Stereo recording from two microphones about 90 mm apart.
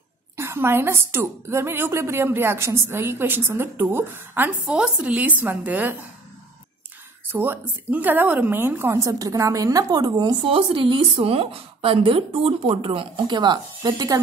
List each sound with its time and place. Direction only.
0.4 s a woman's voice: 30° right (ahead or behind)
4.7 s speech: 10° right (ahead or behind)
7.3 s a woman's voice: 20° right (ahead or behind)
8.9 s a woman's voice: 40° right (ahead or behind)
9.8 s speech: 50° right (ahead or behind)
10.4 s a woman's voice: 70° right (ahead or behind)
13.3 s speech: 55° right (ahead or behind)